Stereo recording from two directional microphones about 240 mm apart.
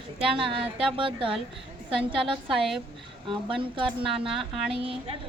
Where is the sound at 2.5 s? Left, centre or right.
Centre.